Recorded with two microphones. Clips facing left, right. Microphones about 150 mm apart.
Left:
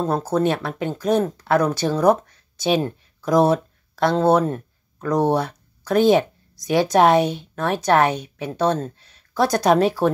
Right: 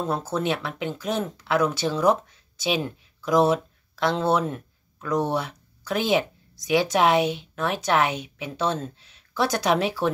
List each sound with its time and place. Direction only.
0.3 s a woman's voice: 45° left (ahead or behind)